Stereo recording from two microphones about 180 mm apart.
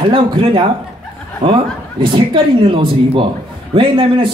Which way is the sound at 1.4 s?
40° right (ahead or behind).